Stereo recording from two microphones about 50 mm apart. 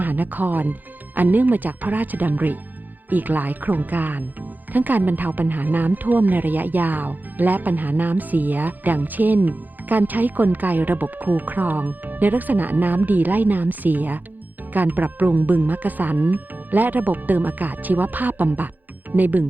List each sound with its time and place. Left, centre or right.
0.0 s speech: right